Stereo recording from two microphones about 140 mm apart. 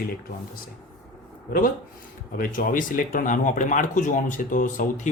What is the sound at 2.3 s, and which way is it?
Speech, 75° left (ahead or behind).